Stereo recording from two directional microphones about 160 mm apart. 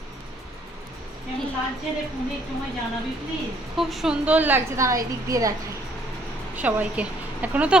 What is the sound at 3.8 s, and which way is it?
A woman's voice, centre (ahead or behind).